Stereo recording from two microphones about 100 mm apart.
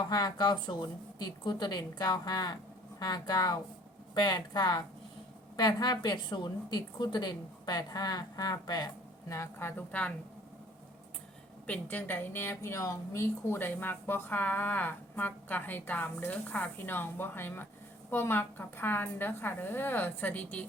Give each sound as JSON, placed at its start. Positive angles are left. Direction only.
{"t": 0.1, "sound": "a woman's voice", "side_deg": 40}
{"t": 9.3, "sound": "a woman's voice", "side_deg": 25}
{"t": 11.6, "sound": "a woman's voice", "side_deg": 15}